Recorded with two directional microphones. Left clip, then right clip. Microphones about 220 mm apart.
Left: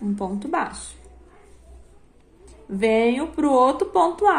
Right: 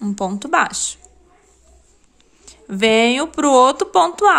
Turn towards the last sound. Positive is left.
turn(degrees=-35)  # may be behind; listen again after turning